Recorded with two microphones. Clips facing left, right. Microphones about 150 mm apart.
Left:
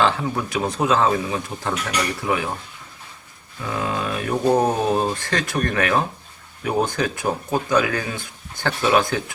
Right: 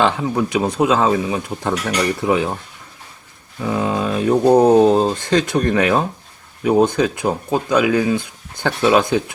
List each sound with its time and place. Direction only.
0.0 s speech: 20° right (ahead or behind)
3.6 s speech: 20° right (ahead or behind)